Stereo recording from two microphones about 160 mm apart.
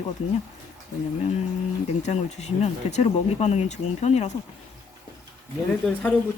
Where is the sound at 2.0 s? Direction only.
45° left (ahead or behind).